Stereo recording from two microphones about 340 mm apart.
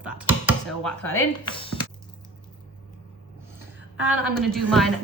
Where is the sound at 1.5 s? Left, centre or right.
Centre.